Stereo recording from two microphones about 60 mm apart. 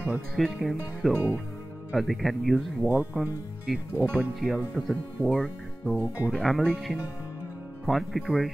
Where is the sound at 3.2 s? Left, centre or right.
Centre.